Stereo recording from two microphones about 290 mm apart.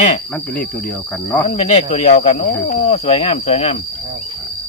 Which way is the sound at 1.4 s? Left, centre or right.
Left.